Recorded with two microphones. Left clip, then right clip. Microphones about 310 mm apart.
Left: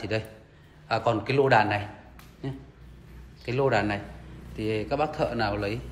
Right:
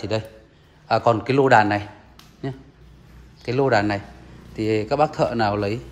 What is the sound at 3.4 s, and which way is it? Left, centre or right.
A man's voice, centre.